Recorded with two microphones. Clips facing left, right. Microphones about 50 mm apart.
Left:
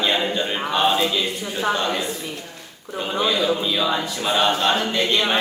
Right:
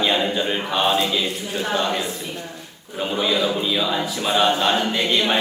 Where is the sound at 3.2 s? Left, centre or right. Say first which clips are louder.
Left 1 dB; centre.